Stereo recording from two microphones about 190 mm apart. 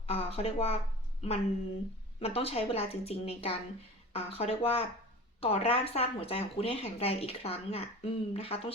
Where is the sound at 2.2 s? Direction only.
30° left (ahead or behind).